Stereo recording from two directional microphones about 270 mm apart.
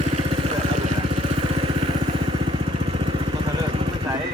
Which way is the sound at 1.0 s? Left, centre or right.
Centre.